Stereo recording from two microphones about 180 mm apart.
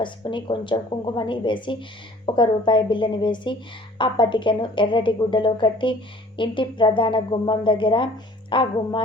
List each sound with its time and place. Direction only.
0.0 s a woman's voice: 25° left (ahead or behind)